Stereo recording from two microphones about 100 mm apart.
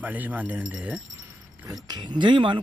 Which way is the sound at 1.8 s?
45° right (ahead or behind).